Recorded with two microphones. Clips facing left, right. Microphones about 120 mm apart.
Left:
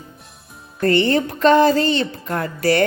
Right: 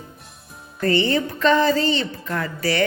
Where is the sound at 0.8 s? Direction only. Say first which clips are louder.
Left 3 dB; 60° left (ahead or behind).